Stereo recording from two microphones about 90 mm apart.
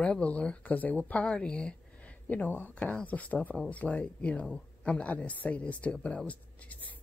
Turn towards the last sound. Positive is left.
turn(degrees=15)  # may be behind; listen again after turning